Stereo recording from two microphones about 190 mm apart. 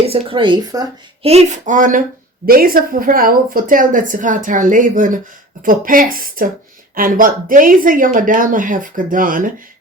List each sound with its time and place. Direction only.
0.1 s speech: 25° right (ahead or behind)
1.2 s a woman's voice: 35° right (ahead or behind)